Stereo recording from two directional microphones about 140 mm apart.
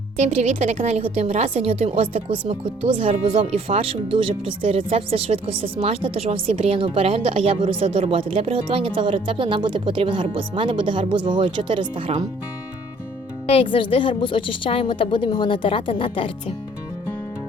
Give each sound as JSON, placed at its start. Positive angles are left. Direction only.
{"t": 0.2, "sound": "a woman's voice", "side_deg": -55}
{"t": 13.5, "sound": "a woman's voice", "side_deg": 40}